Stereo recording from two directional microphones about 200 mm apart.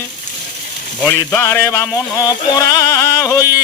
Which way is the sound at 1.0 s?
15° left (ahead or behind).